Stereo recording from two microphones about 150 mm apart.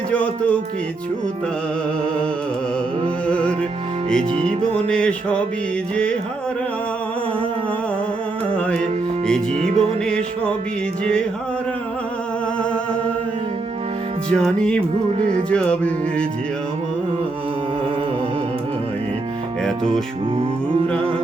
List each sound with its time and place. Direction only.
0.1 s music: 10° left (ahead or behind)
3.2 s music: 10° left (ahead or behind)
4.2 s music: 35° right (ahead or behind)
4.6 s music: 5° left (ahead or behind)
8.5 s music: 10° left (ahead or behind)
9.6 s music: 40° right (ahead or behind)
10.1 s music: 5° left (ahead or behind)
14.3 s music: 5° left (ahead or behind)